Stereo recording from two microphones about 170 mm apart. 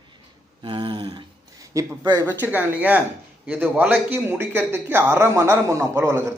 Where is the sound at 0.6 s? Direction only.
30° right (ahead or behind).